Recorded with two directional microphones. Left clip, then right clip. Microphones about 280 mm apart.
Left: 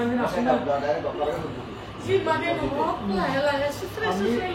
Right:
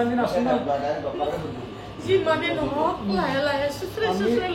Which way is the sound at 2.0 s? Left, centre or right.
Centre.